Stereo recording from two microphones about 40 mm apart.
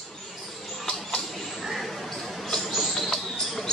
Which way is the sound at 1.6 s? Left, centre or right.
Centre.